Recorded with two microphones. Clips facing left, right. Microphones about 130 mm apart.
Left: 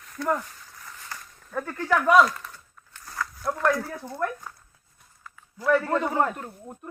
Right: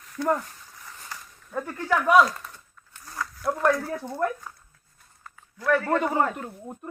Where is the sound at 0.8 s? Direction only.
10° right (ahead or behind).